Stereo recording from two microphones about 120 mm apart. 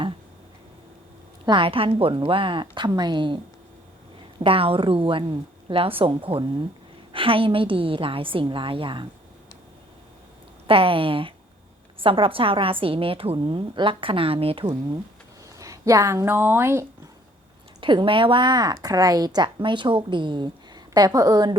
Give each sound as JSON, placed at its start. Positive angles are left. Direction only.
{"t": 1.5, "sound": "a woman's voice", "side_deg": -45}
{"t": 10.7, "sound": "a woman's voice", "side_deg": -50}
{"t": 15.5, "sound": "speech", "side_deg": -25}
{"t": 17.7, "sound": "speech", "side_deg": -45}